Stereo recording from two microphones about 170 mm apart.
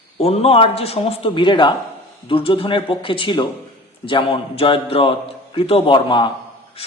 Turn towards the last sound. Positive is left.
turn(degrees=30)  # may be behind; listen again after turning